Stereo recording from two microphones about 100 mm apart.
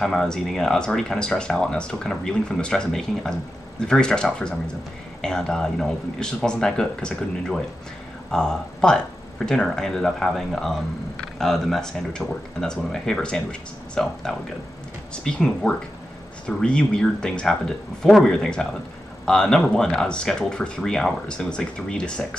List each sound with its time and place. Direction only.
0.0 s speech: 5° left (ahead or behind)